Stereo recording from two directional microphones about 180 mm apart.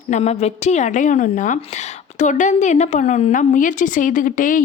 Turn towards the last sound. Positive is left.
turn(degrees=50)  # may be behind; listen again after turning